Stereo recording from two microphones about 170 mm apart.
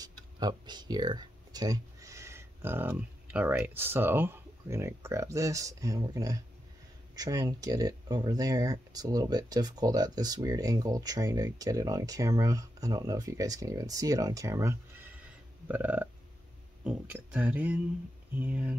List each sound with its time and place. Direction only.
0.0 s speech: 25° right (ahead or behind)